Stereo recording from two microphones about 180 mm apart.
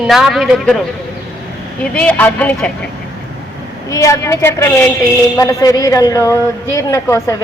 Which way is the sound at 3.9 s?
15° left (ahead or behind).